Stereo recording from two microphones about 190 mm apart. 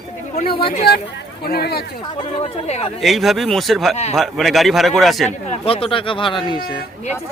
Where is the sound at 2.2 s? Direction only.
25° left (ahead or behind).